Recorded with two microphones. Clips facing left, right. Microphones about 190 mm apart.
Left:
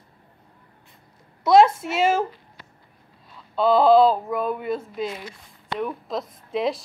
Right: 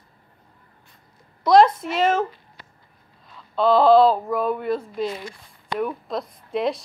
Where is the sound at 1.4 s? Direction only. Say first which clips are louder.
Even; 5° left (ahead or behind).